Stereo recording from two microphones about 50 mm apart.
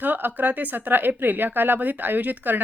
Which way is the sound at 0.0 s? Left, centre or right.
Right.